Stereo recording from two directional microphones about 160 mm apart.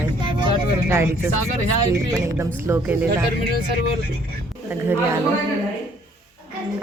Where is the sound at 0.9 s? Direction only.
15° right (ahead or behind).